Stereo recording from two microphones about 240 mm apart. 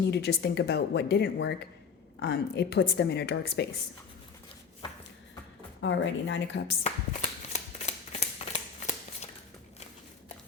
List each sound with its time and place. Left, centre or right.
0.0 s a woman's voice: left
5.8 s a woman's voice: left
6.8 s shuffling cards: left